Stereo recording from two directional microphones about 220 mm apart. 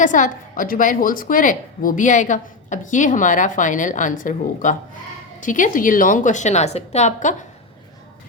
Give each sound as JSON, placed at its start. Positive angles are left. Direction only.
{"t": 0.0, "sound": "a woman's voice", "side_deg": 35}